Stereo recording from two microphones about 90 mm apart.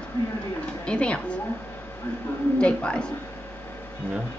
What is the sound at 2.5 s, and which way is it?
Speech, 10° left (ahead or behind).